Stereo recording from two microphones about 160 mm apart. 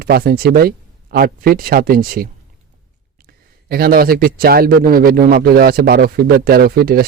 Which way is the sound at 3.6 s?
70° right (ahead or behind).